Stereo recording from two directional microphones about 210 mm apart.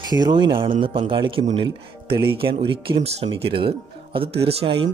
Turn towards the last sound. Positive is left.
turn(degrees=-25)  # may be behind; listen again after turning